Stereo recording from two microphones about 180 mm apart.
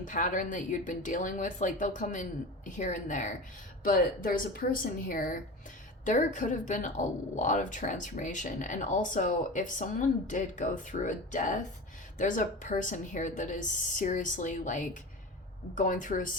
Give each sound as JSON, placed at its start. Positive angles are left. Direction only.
{"t": 0.1, "sound": "a woman's voice", "side_deg": 45}